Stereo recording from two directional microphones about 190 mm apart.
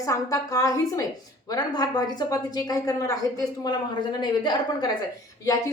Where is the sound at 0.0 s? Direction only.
15° left (ahead or behind).